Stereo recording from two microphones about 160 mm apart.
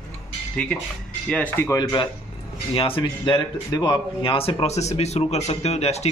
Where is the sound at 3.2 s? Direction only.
25° left (ahead or behind).